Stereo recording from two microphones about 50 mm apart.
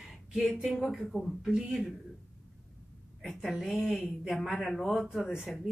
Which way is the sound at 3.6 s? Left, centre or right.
Centre.